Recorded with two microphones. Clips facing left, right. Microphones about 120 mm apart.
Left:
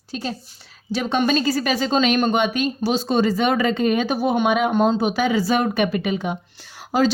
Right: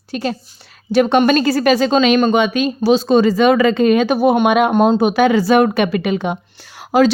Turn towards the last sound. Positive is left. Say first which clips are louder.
# right 6 dB
turn(degrees=-70)  # may be behind; listen again after turning